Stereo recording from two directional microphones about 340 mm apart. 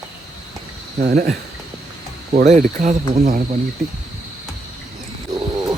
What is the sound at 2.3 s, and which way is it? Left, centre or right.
Speech, right.